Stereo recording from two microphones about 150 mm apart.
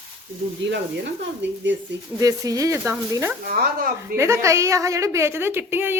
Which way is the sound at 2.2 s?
25° right (ahead or behind).